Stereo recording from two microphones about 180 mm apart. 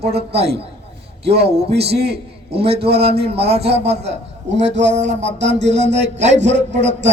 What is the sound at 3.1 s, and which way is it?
A man's voice, 60° right (ahead or behind).